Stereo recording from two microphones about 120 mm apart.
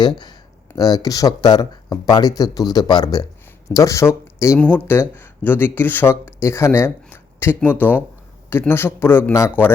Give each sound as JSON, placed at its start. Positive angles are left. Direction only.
{"t": 0.0, "sound": "a man's voice", "side_deg": 35}